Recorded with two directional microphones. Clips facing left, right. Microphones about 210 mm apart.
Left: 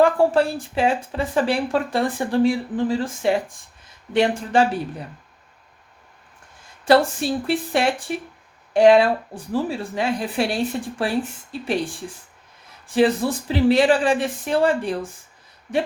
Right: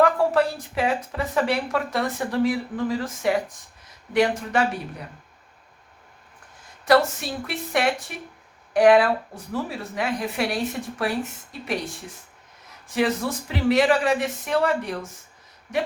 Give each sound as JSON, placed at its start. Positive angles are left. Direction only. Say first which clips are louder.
{"t": 0.0, "sound": "speech", "louder": "left 3 dB", "side_deg": 30}
{"t": 6.8, "sound": "speech", "louder": "left 3 dB", "side_deg": 30}
{"t": 12.9, "sound": "speech", "louder": "left 5 dB", "side_deg": 30}